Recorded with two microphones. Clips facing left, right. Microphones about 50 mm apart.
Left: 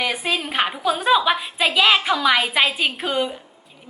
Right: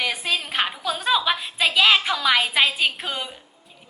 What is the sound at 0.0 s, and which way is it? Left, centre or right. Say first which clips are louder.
A woman's voice: left 2 dB; centre.